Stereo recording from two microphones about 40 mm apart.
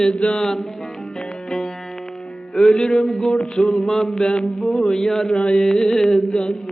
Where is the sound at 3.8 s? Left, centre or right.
Centre.